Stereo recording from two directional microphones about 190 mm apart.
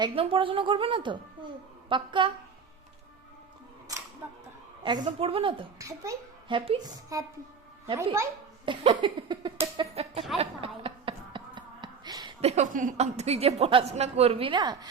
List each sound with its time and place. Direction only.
0.0 s speech: 25° right (ahead or behind)
4.2 s speech: 10° right (ahead or behind)
4.8 s speech: 25° right (ahead or behind)
8.6 s a sound: 30° right (ahead or behind)
9.7 s music: 30° right (ahead or behind)
10.3 s a sound: 30° right (ahead or behind)